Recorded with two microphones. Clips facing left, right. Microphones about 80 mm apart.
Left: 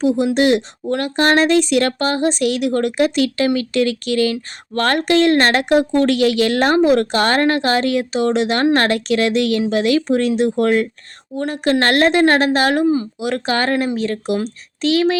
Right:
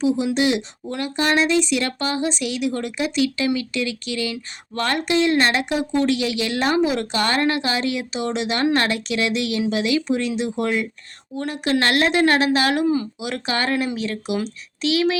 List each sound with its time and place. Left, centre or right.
0.0 s speech: left